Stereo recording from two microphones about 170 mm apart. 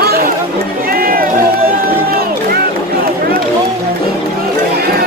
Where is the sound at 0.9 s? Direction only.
60° right (ahead or behind).